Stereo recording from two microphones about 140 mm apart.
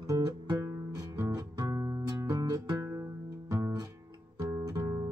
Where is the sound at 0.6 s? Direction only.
20° right (ahead or behind).